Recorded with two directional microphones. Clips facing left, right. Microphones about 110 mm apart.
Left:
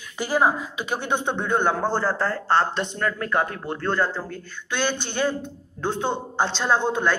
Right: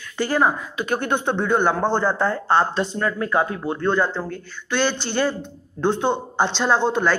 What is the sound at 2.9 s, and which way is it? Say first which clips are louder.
A man's voice: right 2 dB; 20° right (ahead or behind).